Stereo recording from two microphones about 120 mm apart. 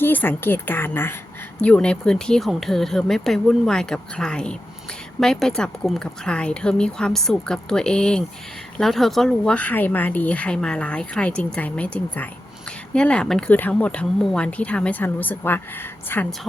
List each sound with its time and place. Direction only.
0.0 s speech: 15° left (ahead or behind)